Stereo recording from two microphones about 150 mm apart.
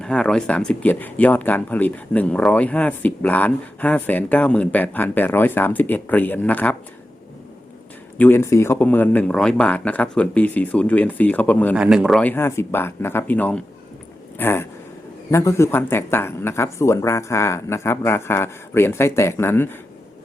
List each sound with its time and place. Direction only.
0.0 s speech: 5° left (ahead or behind)
8.2 s speech: 15° left (ahead or behind)
11.8 s speech: 5° right (ahead or behind)
12.2 s speech: 15° left (ahead or behind)